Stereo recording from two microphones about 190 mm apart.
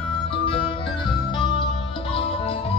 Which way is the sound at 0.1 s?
30° left (ahead or behind).